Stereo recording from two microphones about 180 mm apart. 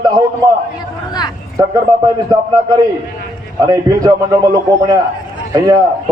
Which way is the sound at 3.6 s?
20° right (ahead or behind).